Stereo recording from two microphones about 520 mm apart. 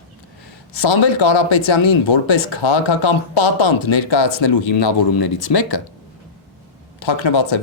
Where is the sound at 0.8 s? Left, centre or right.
Left.